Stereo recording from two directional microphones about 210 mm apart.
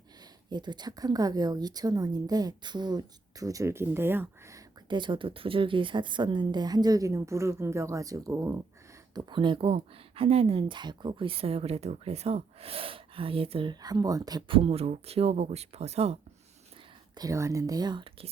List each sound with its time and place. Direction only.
0.5 s a woman's voice: 20° right (ahead or behind)
4.9 s speech: 20° right (ahead or behind)
17.2 s a woman's voice: 15° right (ahead or behind)